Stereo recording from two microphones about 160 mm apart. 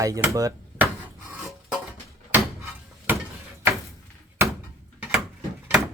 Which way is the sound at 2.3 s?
10° right (ahead or behind).